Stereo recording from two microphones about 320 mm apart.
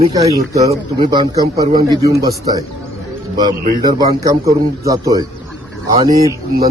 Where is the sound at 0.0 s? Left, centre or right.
Centre.